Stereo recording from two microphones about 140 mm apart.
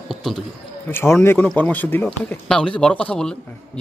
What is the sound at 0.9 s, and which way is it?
A man's voice, 15° left (ahead or behind).